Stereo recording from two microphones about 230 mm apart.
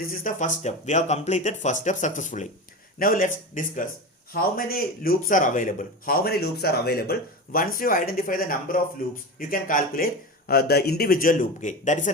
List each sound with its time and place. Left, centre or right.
0.0 s speech: left